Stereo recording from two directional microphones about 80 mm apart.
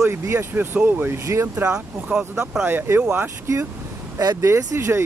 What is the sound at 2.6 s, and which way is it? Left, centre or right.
Speech, right.